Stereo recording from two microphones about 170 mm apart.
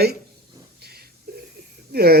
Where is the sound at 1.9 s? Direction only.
65° right (ahead or behind).